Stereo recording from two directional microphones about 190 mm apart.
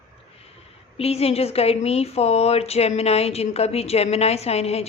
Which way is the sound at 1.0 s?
30° left (ahead or behind).